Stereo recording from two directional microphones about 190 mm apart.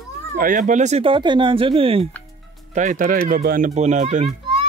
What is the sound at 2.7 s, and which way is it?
Speech, 40° right (ahead or behind).